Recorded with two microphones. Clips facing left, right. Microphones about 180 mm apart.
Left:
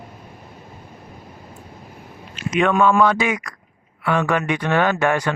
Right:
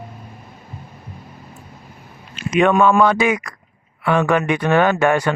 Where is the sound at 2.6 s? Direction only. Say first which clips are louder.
Right 2 dB; 20° right (ahead or behind).